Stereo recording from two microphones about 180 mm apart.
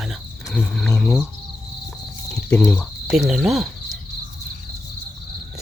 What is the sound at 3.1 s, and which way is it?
Speech, centre (ahead or behind).